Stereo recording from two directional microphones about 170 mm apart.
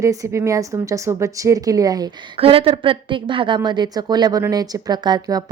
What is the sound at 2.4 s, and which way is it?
A woman's voice, 35° right (ahead or behind).